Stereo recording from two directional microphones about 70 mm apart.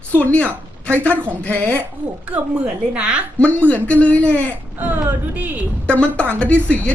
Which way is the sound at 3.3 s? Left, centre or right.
Centre.